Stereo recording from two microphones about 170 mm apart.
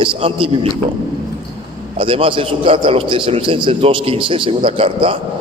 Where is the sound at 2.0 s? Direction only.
30° right (ahead or behind).